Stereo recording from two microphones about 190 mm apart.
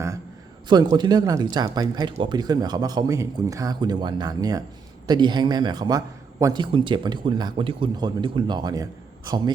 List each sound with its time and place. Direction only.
0.7 s speech: 20° right (ahead or behind)